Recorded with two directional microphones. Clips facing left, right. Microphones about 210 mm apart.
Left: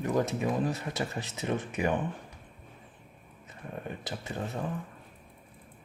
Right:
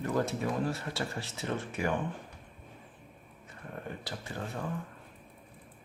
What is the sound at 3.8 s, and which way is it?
Speech, 20° left (ahead or behind).